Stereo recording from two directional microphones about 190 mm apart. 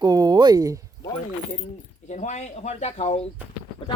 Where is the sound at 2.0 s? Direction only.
40° left (ahead or behind).